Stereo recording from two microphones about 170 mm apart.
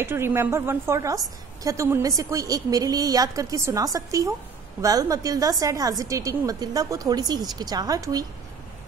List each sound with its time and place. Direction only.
0.0 s a woman's voice: 15° right (ahead or behind)